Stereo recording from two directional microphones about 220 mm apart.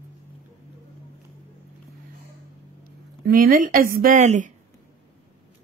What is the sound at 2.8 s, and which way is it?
Speech, 40° right (ahead or behind).